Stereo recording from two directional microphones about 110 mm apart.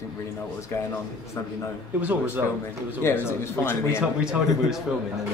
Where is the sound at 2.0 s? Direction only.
15° right (ahead or behind).